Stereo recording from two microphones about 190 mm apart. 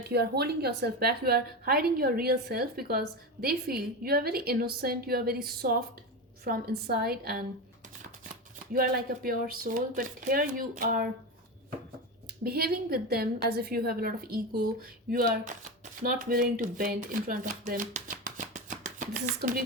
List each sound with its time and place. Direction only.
0.0 s a woman's voice: 55° right (ahead or behind)
8.7 s a woman's voice: 50° right (ahead or behind)
12.4 s a woman's voice: 55° right (ahead or behind)